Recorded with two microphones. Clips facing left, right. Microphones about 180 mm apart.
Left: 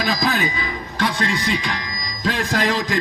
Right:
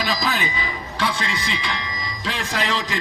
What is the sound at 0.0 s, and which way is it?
Speech, 50° left (ahead or behind).